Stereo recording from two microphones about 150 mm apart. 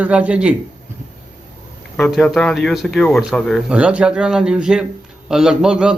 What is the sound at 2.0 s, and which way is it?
Speech, centre (ahead or behind).